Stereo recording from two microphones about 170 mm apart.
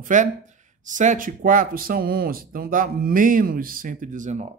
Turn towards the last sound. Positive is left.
turn(degrees=-45)  # may be behind; listen again after turning